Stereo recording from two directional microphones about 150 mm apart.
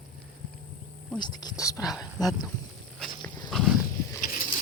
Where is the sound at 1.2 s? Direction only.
30° left (ahead or behind).